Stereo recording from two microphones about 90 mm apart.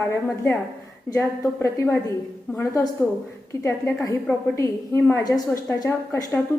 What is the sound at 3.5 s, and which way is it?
A woman's voice, 35° left (ahead or behind).